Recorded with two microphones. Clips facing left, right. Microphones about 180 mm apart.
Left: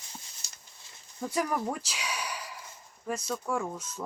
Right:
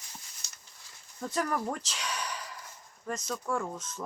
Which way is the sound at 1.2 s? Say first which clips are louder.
Left 1 dB; 10° left (ahead or behind).